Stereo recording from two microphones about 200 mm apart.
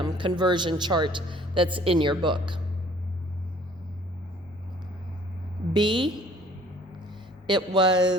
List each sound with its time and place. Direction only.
0.0 s speech: 25° right (ahead or behind)
5.7 s speech: 25° right (ahead or behind)
7.4 s speech: 20° right (ahead or behind)